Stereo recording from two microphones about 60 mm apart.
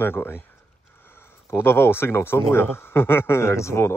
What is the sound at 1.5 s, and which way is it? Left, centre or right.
Speech, left.